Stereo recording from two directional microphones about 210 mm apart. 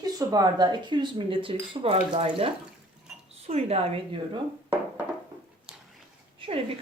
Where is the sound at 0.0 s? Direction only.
15° right (ahead or behind).